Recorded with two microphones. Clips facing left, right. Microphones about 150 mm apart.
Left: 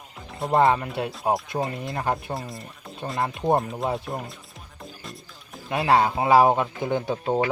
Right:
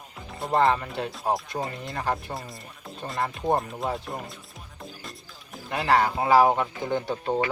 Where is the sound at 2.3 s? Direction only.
Centre (ahead or behind).